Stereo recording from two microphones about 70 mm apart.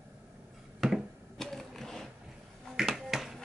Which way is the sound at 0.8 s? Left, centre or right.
Centre.